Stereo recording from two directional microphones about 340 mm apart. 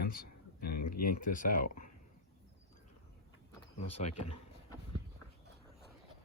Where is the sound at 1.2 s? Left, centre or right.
Left.